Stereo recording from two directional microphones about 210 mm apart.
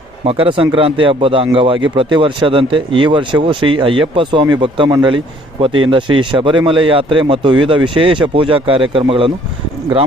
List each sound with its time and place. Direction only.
0.3 s speech: 25° right (ahead or behind)